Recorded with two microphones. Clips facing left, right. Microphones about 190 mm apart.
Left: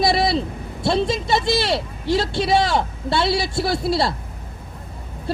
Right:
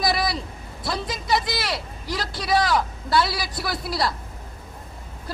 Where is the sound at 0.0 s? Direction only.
25° left (ahead or behind).